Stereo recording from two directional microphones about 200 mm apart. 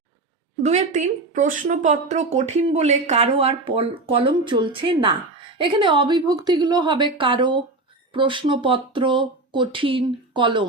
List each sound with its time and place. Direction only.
0.6 s speech: 35° right (ahead or behind)